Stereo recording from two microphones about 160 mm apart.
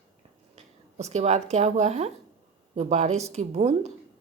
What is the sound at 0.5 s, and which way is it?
Speech, 45° right (ahead or behind).